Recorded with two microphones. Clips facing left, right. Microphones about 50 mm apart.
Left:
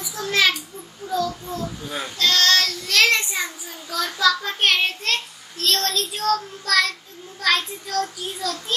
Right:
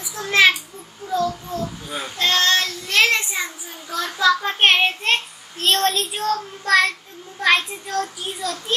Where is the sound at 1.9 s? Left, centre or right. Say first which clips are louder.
Right 1 dB; right.